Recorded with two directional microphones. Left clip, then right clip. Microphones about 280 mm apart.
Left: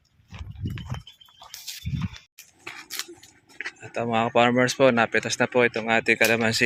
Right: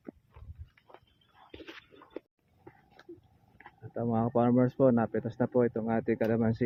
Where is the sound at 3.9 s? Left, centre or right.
Centre.